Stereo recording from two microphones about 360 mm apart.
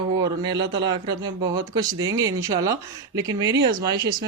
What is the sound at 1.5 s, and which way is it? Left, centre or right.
Speech, centre.